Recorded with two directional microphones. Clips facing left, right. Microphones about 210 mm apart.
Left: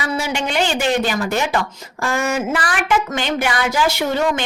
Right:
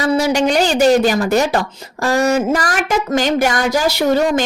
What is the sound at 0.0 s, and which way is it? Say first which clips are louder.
Speech: right 8 dB; 40° right (ahead or behind).